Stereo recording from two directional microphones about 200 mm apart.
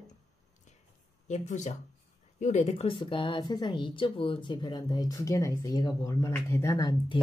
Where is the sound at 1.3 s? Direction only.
35° left (ahead or behind).